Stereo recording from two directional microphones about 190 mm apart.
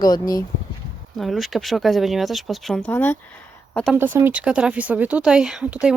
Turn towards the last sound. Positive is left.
turn(degrees=-5)  # may be behind; listen again after turning